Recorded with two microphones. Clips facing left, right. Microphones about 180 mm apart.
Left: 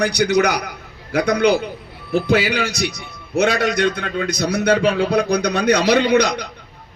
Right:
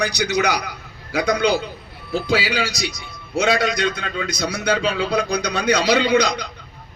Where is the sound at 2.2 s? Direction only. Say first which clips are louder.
Left 4 dB; 50° left (ahead or behind).